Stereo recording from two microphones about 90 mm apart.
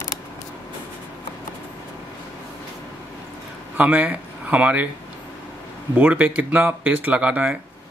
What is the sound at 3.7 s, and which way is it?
Speech, 15° right (ahead or behind).